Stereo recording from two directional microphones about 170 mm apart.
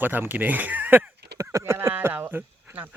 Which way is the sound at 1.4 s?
20° right (ahead or behind).